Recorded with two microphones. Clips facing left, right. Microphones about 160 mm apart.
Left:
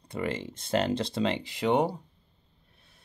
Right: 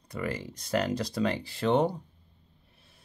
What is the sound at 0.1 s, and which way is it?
Speech, 25° left (ahead or behind).